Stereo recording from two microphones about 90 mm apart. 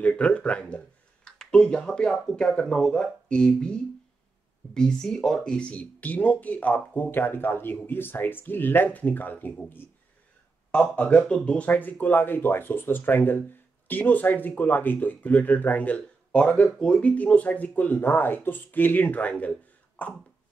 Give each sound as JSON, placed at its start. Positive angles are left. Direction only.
{"t": 0.0, "sound": "speech", "side_deg": 15}